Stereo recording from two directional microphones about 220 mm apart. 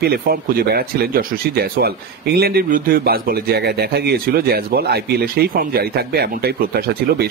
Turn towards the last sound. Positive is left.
turn(degrees=-45)  # may be behind; listen again after turning